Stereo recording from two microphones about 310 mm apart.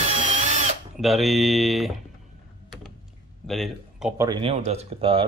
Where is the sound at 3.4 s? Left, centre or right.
Centre.